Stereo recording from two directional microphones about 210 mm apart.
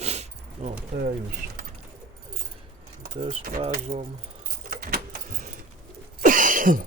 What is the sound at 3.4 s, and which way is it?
Speech, 40° right (ahead or behind).